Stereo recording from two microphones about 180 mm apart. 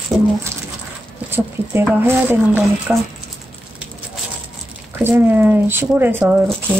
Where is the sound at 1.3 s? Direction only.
10° right (ahead or behind).